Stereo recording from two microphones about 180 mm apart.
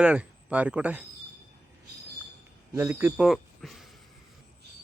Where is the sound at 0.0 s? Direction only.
5° right (ahead or behind).